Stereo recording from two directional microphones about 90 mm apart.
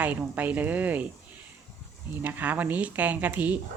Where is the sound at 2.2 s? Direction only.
20° right (ahead or behind).